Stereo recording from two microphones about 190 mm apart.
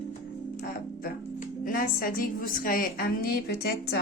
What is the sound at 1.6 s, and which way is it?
A woman's voice, 50° left (ahead or behind).